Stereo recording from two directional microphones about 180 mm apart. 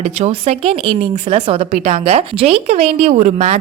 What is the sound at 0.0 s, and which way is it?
A woman's voice, 35° right (ahead or behind).